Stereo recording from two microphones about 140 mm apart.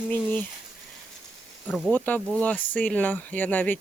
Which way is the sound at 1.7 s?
Centre (ahead or behind).